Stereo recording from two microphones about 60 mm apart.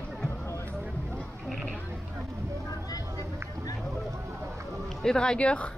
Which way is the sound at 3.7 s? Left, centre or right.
Centre.